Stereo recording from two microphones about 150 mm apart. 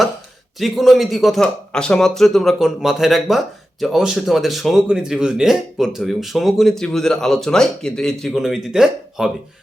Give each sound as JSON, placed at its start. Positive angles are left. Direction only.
{"t": 0.6, "sound": "a man's voice", "side_deg": 0}